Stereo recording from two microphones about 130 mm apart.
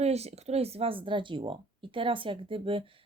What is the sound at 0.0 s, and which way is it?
Speech, 55° right (ahead or behind).